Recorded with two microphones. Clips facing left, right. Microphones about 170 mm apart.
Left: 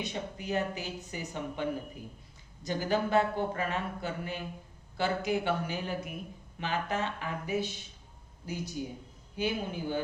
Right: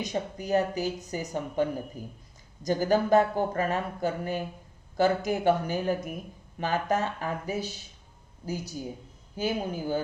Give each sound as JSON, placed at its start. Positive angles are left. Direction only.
{"t": 0.0, "sound": "a woman's voice", "side_deg": -40}
{"t": 9.3, "sound": "speech", "side_deg": -40}